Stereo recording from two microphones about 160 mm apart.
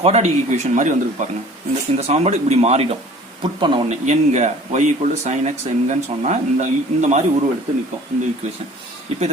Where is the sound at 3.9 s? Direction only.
45° right (ahead or behind).